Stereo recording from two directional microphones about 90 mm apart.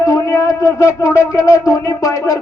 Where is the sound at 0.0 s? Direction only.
35° left (ahead or behind).